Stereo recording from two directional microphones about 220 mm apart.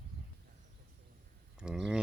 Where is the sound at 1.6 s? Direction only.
5° right (ahead or behind).